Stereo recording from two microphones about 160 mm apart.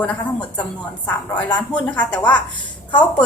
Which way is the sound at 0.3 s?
25° left (ahead or behind).